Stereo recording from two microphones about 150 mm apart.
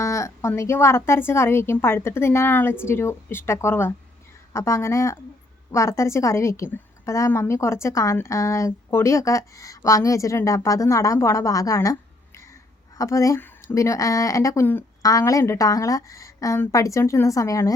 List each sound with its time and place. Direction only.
0.0 s a woman's voice: 20° left (ahead or behind)
13.0 s a woman's voice: 20° left (ahead or behind)